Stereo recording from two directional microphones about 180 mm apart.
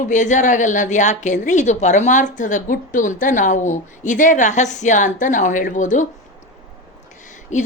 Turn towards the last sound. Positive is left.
turn(degrees=40)  # may be behind; listen again after turning